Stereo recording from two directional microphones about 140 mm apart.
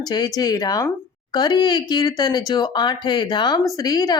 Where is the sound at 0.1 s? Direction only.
30° left (ahead or behind).